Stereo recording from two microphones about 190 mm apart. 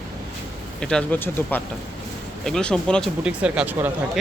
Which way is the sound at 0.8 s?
5° left (ahead or behind).